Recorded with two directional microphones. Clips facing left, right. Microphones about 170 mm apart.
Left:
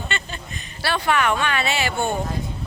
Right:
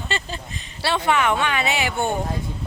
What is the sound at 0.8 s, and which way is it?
Speech, 25° right (ahead or behind).